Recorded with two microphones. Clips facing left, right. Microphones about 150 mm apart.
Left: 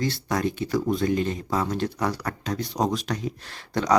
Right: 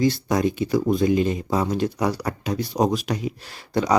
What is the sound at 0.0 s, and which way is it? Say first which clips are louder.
Speech: right 5 dB; 15° right (ahead or behind).